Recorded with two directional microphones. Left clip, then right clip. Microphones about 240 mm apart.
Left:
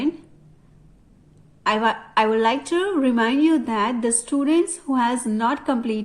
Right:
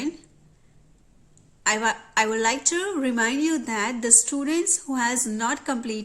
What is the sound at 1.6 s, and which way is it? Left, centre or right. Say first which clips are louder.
A woman's voice: left 3 dB; right.